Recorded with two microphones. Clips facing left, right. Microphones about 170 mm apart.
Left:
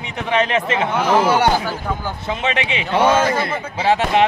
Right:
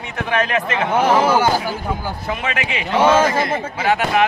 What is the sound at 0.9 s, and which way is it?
Speech, 45° right (ahead or behind).